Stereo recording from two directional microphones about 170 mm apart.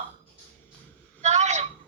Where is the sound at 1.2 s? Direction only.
40° right (ahead or behind).